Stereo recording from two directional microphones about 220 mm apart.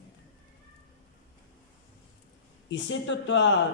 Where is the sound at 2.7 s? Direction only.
55° left (ahead or behind).